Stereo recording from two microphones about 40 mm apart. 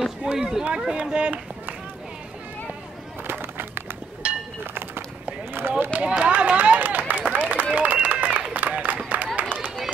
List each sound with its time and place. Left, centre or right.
0.2 s run: right
0.9 s speech: right
3.3 s bird: right
4.2 s a sound: right
5.5 s run: right
6.0 s run: right
6.3 s run: right
6.8 s run: right
7.7 s a sound: right
9.4 s run: right